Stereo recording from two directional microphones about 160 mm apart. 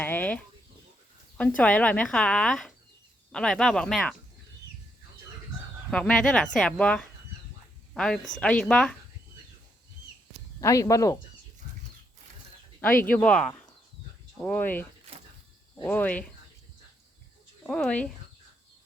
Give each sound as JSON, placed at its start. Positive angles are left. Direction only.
{"t": 0.0, "sound": "speech", "side_deg": 10}
{"t": 1.4, "sound": "speech", "side_deg": 10}
{"t": 5.9, "sound": "speech", "side_deg": 5}
{"t": 10.6, "sound": "speech", "side_deg": 20}
{"t": 13.0, "sound": "speech", "side_deg": 10}
{"t": 17.6, "sound": "speech", "side_deg": 5}